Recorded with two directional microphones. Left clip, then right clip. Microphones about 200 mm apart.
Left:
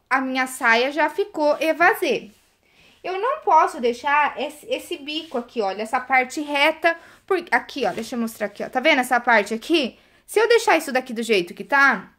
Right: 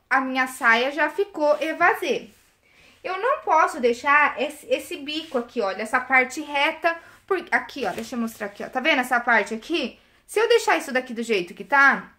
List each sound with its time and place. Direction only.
0.1 s a child's voice: 35° left (ahead or behind); by 2.2 s 50° left (ahead or behind)
3.0 s a child's voice: 35° left (ahead or behind)